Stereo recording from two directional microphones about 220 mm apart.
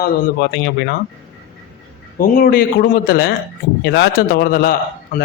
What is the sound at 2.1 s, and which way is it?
A man's voice, 40° left (ahead or behind).